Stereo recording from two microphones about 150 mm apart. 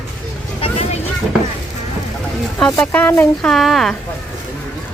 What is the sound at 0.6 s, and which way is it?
Vehicle, 40° left (ahead or behind).